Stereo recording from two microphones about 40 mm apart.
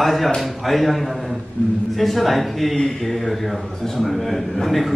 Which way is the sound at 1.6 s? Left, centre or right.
Left.